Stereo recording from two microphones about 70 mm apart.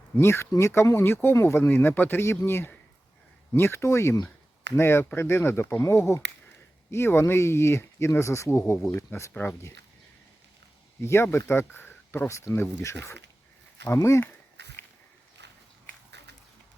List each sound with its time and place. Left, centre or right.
0.2 s speech: left
11.0 s speech: left
12.7 s speech: left